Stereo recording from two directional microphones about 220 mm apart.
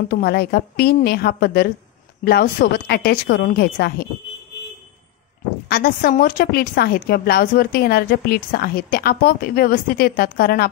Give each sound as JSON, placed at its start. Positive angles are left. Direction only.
{"t": 0.1, "sound": "a woman's voice", "side_deg": 45}
{"t": 5.7, "sound": "a woman's voice", "side_deg": 40}